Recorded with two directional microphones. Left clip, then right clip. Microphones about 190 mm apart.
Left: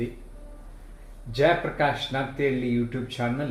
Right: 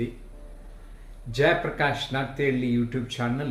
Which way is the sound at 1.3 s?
15° right (ahead or behind).